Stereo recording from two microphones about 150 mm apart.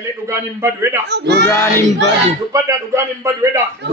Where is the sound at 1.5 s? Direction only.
15° left (ahead or behind).